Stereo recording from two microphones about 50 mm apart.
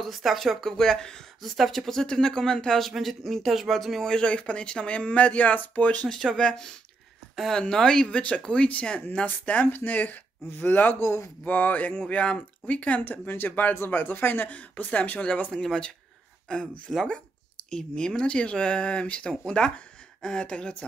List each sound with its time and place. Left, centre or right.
0.0 s speech: centre
4.1 s speech: left
6.3 s speech: centre
7.7 s speech: centre
9.2 s speech: left
11.0 s speech: left
11.4 s speech: left
15.5 s speech: centre
16.9 s speech: centre